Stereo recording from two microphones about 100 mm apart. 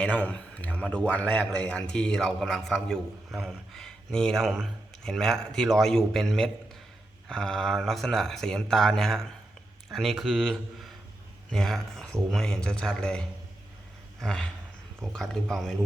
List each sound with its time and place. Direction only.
0.0 s a man's voice: 15° left (ahead or behind)